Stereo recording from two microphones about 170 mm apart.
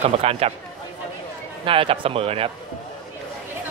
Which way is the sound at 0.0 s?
35° right (ahead or behind).